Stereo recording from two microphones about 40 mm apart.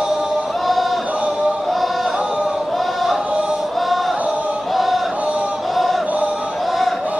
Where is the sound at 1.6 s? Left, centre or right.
Centre.